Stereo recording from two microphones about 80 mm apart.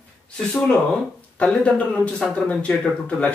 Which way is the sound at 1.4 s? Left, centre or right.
Centre.